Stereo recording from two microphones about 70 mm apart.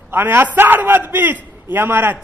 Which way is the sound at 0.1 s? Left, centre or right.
Right.